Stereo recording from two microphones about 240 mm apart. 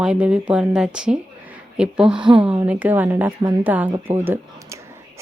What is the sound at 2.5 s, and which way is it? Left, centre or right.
A woman's voice, centre.